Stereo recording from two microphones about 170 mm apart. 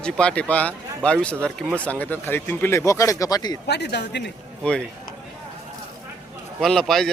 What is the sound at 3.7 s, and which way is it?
Speech, 80° left.